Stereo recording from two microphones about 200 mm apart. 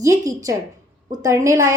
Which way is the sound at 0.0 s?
15° right (ahead or behind).